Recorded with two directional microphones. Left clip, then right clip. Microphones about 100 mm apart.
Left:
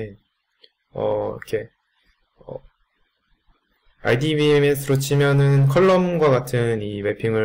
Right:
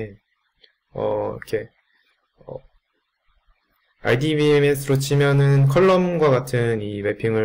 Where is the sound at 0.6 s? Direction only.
5° right (ahead or behind).